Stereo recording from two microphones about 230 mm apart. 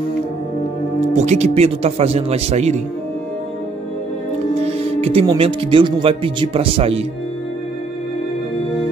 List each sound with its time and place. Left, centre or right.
1.1 s speech: right
5.0 s speech: right